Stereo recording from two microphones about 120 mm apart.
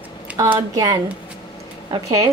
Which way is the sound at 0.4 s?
30° right (ahead or behind).